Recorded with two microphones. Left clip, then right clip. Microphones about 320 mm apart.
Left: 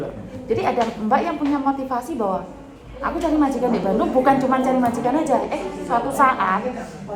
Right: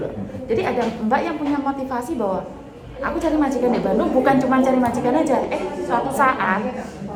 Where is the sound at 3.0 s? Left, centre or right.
Centre.